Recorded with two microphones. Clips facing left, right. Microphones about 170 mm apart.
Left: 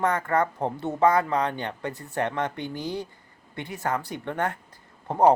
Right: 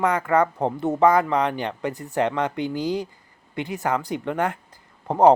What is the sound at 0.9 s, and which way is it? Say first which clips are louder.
Speech: right 3 dB; 20° right (ahead or behind).